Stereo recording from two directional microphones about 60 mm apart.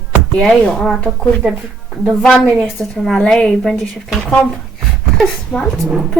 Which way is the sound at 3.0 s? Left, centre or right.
Centre.